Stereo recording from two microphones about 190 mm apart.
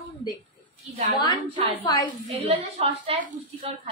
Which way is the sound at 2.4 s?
30° right (ahead or behind).